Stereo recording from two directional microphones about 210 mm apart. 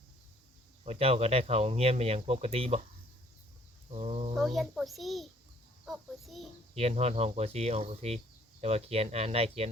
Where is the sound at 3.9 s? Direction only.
30° right (ahead or behind).